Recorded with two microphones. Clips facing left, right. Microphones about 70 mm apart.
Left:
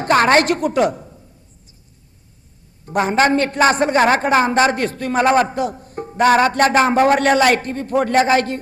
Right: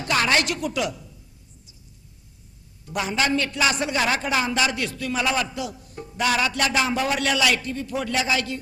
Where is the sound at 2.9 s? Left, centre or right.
Left.